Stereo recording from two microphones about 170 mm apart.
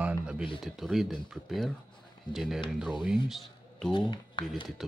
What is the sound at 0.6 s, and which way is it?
Speech, centre (ahead or behind).